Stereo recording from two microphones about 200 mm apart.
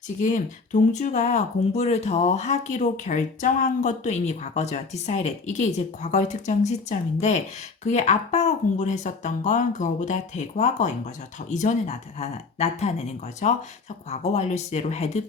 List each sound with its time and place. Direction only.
0.2 s speech: 40° left (ahead or behind)